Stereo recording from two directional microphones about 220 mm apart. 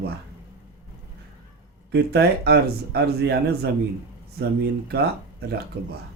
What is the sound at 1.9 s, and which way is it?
A man's voice, 50° right (ahead or behind).